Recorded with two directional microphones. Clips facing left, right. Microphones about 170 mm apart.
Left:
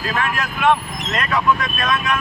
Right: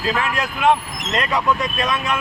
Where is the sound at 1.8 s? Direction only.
30° right (ahead or behind).